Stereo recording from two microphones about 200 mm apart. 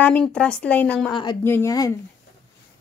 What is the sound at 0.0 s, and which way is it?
A woman's voice, 5° left (ahead or behind).